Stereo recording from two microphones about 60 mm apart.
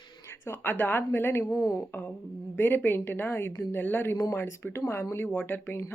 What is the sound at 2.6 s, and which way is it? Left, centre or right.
Speech, left.